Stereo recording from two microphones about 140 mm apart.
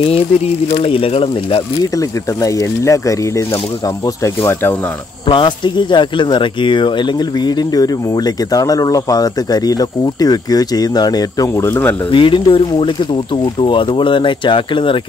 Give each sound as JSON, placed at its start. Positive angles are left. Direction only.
{"t": 0.7, "sound": "speech", "side_deg": 40}
{"t": 2.0, "sound": "speech", "side_deg": 25}
{"t": 5.2, "sound": "speech", "side_deg": 35}
{"t": 12.1, "sound": "speech", "side_deg": 35}